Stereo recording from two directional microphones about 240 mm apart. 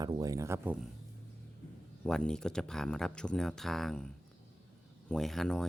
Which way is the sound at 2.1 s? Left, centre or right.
Centre.